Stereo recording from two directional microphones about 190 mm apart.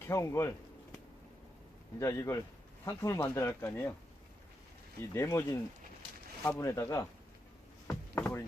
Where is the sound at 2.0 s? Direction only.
15° left (ahead or behind).